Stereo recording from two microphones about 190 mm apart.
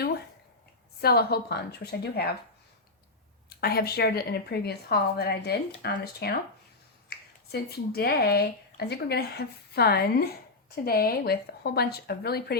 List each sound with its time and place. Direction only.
1.0 s a woman's voice: 55° left (ahead or behind)
3.5 s a woman's voice: 55° left (ahead or behind)